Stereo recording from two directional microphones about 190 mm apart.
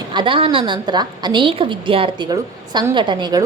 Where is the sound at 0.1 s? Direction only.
25° right (ahead or behind).